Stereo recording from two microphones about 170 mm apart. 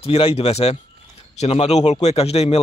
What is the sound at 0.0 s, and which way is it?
Speech, 35° left (ahead or behind).